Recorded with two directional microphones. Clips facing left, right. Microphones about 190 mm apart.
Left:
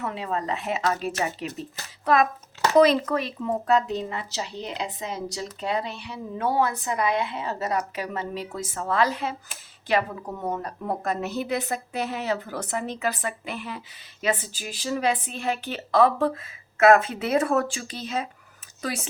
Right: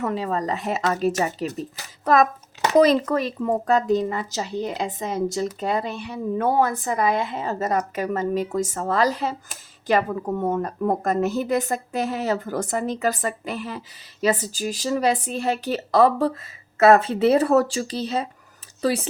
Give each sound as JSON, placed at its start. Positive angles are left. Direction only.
{"t": 0.0, "sound": "speech", "side_deg": -40}
{"t": 2.7, "sound": "speech", "side_deg": -40}